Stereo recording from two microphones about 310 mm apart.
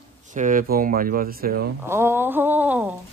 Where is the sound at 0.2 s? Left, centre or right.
Right.